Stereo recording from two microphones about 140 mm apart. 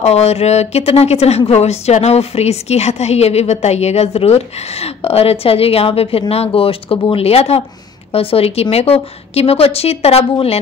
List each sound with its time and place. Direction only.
0.0 s speech: 50° left (ahead or behind)